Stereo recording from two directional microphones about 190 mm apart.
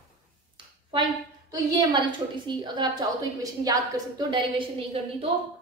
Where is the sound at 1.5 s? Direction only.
25° right (ahead or behind).